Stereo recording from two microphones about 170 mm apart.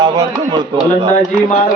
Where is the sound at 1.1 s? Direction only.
50° left (ahead or behind).